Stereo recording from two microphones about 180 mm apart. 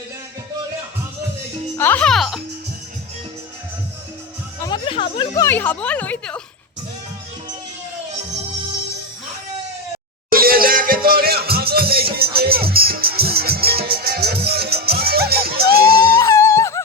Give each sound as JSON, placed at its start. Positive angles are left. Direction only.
{"t": 1.8, "sound": "a child's voice", "side_deg": 10}
{"t": 4.6, "sound": "speech", "side_deg": 30}
{"t": 10.2, "sound": "music", "side_deg": -55}
{"t": 16.2, "sound": "music", "side_deg": 15}